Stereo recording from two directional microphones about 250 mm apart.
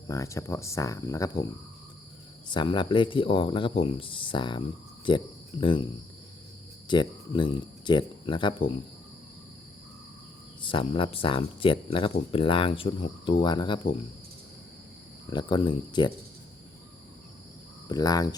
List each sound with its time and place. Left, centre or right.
0.1 s speech: centre
2.5 s speech: centre
5.0 s cricket: centre
6.8 s speech: centre
10.6 s speech: centre
15.3 s speech: centre
17.8 s speech: centre